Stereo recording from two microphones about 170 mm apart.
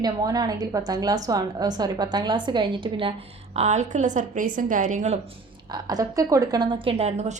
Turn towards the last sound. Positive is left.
turn(degrees=-40)  # may be behind; listen again after turning